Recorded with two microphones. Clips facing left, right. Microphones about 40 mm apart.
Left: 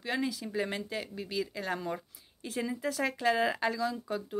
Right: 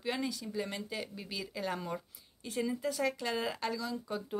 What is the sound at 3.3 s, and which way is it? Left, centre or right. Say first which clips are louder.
Speech: left 6 dB; left.